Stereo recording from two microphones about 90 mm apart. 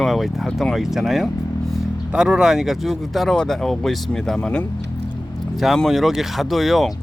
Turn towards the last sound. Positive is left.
turn(degrees=0)  # may be behind; listen again after turning